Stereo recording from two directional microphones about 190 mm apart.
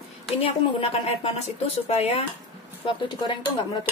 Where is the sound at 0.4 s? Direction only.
30° left (ahead or behind).